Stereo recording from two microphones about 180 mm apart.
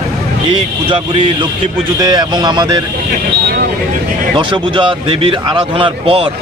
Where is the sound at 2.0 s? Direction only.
25° right (ahead or behind).